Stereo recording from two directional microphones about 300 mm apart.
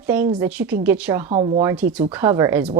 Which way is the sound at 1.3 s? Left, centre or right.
Right.